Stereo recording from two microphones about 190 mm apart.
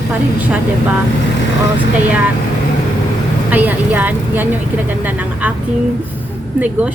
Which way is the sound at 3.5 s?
10° right (ahead or behind).